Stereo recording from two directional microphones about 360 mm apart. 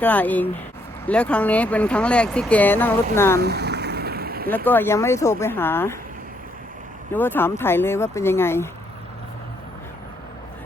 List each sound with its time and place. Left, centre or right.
0.0 s speech: centre
3.4 s vehicle: right
4.5 s speech: centre
7.1 s speech: centre